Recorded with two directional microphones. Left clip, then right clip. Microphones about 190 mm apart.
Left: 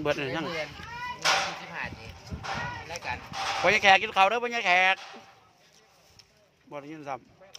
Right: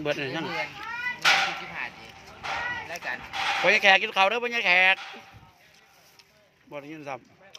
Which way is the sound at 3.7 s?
5° right (ahead or behind).